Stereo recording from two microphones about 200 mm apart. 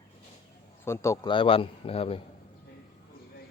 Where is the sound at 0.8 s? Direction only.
15° left (ahead or behind).